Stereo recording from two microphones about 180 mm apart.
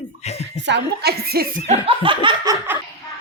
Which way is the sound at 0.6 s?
70° right (ahead or behind).